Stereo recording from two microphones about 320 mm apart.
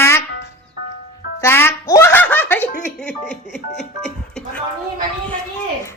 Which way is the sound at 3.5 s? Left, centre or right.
Left.